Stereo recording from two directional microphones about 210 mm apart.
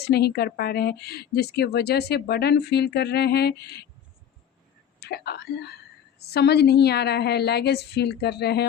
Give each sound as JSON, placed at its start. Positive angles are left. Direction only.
{"t": 0.0, "sound": "a woman's voice", "side_deg": 50}
{"t": 4.9, "sound": "a woman's voice", "side_deg": 50}